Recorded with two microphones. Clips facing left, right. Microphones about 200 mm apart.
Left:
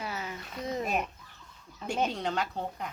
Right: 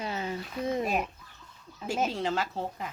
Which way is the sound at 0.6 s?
Centre (ahead or behind).